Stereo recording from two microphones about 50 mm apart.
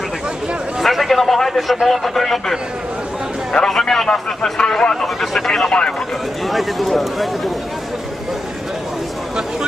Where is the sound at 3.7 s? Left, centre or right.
Centre.